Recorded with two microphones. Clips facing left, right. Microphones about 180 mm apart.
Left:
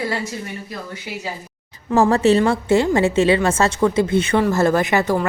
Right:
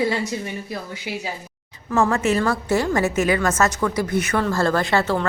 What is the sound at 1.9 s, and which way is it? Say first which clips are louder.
A woman's voice: left 5 dB; 30° left (ahead or behind).